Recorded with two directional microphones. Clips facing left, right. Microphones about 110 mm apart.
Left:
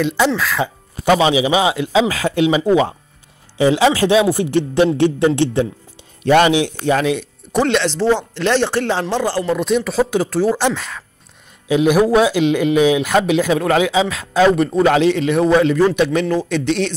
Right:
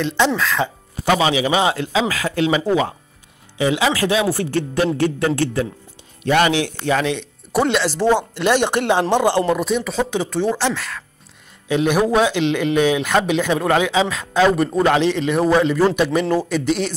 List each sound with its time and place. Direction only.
0.4 s speech: 5° left (ahead or behind)
1.0 s speech: 20° left (ahead or behind)
1.9 s speech: 25° left (ahead or behind)
3.5 s speech: 35° left (ahead or behind)
6.5 s speech: 15° left (ahead or behind)
7.5 s a man's voice: 5° right (ahead or behind); by 9.6 s 20° right (ahead or behind)
9.6 s a man's voice: centre (ahead or behind)
10.6 s a man's voice: 15° left (ahead or behind); by 16.9 s 5° right (ahead or behind)